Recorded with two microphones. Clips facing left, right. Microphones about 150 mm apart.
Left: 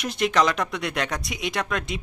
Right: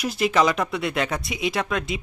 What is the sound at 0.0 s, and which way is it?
Speech, 5° right (ahead or behind).